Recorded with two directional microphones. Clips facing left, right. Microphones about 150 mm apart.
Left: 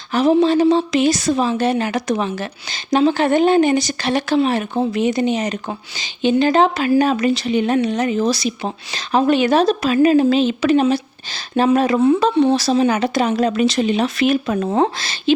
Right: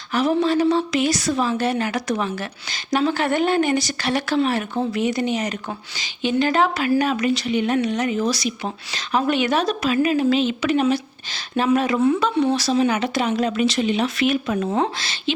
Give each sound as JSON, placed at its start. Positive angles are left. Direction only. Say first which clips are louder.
{"t": 0.1, "sound": "a woman's voice", "louder": "left 5 dB", "side_deg": 25}